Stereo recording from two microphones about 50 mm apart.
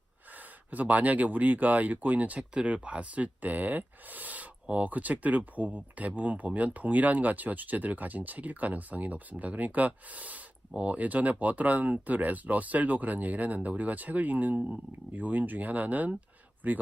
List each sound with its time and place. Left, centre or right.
0.3 s speech: right